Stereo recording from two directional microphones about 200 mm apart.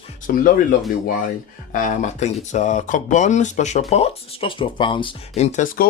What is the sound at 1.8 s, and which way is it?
Speech, 35° left (ahead or behind).